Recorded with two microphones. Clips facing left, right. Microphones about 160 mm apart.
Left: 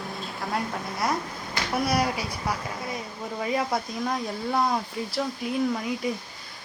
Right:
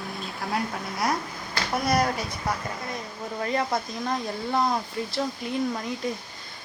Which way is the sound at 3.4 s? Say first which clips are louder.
Even; 5° left (ahead or behind).